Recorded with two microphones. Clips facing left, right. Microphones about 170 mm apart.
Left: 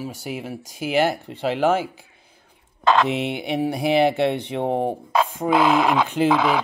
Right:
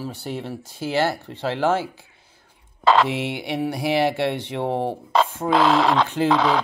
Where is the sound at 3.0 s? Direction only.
20° left (ahead or behind).